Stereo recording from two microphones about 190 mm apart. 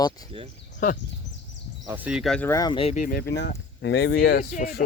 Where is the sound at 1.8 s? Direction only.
10° right (ahead or behind).